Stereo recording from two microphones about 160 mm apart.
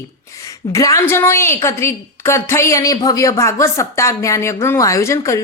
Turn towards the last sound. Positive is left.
turn(degrees=20)  # may be behind; listen again after turning